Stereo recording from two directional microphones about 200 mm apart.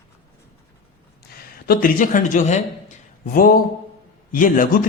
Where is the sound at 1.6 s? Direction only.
40° left (ahead or behind).